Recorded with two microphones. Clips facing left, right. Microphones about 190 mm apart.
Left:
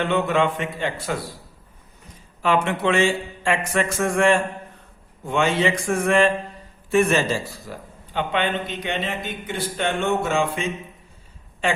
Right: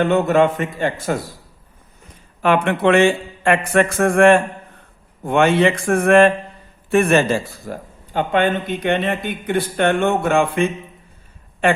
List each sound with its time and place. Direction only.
0.0 s a man's voice: 45° right (ahead or behind)
2.4 s a man's voice: 60° right (ahead or behind)